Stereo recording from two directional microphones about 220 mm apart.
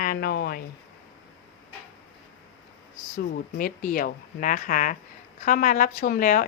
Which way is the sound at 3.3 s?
40° left (ahead or behind).